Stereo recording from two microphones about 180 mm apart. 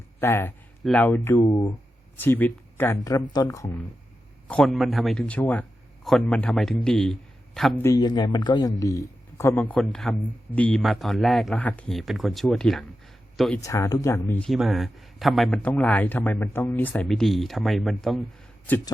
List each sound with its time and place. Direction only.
0.2 s speech: 15° left (ahead or behind)
4.4 s a man's voice: 5° left (ahead or behind)
7.8 s speech: 20° left (ahead or behind); by 13.6 s centre (ahead or behind)
13.6 s speech: 15° left (ahead or behind)